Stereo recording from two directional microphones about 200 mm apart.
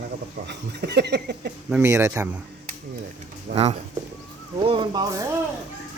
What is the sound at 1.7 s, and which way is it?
Speech, 15° right (ahead or behind).